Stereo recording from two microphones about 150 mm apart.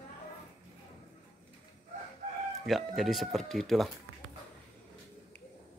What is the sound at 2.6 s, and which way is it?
Speech, centre (ahead or behind).